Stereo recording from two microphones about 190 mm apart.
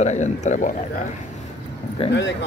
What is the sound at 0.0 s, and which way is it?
Speech, 40° left (ahead or behind).